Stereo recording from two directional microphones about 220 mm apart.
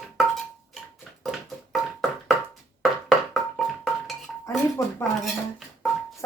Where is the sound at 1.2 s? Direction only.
Centre (ahead or behind).